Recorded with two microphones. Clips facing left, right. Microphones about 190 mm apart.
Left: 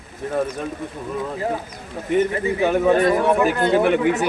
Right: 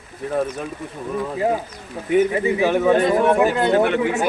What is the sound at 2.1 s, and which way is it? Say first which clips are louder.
Speech: right 2 dB; 10° right (ahead or behind).